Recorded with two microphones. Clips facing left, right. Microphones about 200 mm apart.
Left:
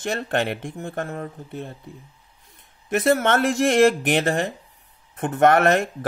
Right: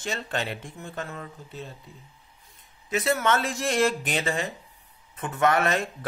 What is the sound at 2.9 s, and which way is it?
Speech, 60° left (ahead or behind).